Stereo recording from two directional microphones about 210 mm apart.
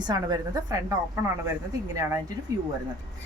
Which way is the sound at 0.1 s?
20° right (ahead or behind).